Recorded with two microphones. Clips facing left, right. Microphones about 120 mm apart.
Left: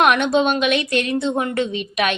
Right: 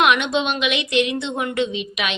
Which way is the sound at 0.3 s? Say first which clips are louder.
Left 4 dB; 45° left (ahead or behind).